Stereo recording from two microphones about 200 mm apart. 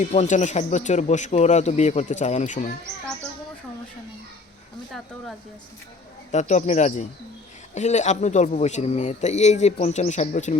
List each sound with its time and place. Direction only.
0.1 s a man's voice: 35° left (ahead or behind)
6.3 s a man's voice: 35° left (ahead or behind)